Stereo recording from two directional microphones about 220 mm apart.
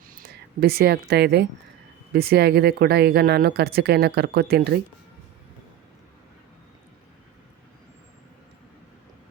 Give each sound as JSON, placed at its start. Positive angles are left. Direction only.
{"t": 0.1, "sound": "speech", "side_deg": -45}